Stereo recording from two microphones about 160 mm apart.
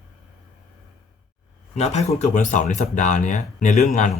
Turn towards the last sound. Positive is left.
turn(degrees=45)  # may be behind; listen again after turning